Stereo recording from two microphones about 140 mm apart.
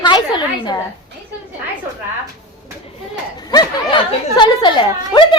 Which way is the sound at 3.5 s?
30° left (ahead or behind).